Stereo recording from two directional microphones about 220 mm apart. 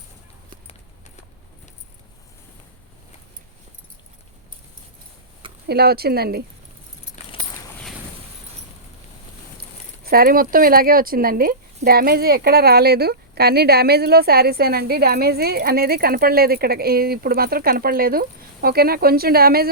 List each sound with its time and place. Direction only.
5.6 s speech: 45° right (ahead or behind)
10.0 s speech: 45° right (ahead or behind)